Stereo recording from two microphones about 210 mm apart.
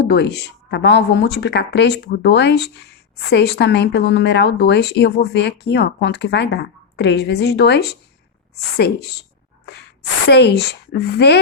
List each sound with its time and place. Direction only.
0.0 s speech: 50° left (ahead or behind)
10.2 s speech: 55° left (ahead or behind)